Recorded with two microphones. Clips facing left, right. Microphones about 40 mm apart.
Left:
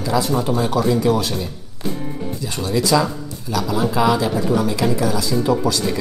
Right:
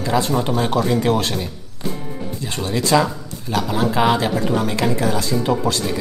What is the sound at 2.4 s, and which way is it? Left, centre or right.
Music, right.